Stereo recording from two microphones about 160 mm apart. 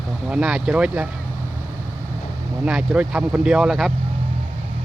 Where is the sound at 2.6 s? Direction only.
5° right (ahead or behind).